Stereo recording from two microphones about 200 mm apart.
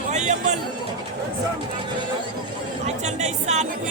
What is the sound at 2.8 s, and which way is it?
Speech, 35° right (ahead or behind).